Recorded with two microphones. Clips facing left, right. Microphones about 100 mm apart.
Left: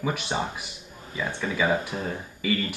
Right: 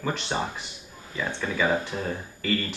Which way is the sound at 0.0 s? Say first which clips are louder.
Left 1 dB; 10° left (ahead or behind).